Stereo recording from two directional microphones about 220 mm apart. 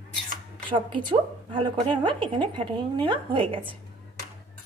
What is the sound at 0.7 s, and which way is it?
A woman's voice, 20° right (ahead or behind).